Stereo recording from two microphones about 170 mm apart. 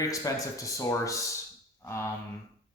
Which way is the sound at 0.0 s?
20° left (ahead or behind).